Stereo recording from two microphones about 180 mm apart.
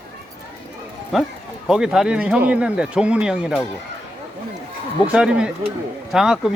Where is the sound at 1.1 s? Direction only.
Centre (ahead or behind).